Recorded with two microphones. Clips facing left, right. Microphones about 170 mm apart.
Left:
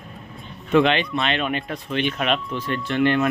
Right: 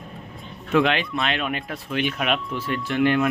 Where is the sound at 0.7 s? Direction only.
Centre (ahead or behind).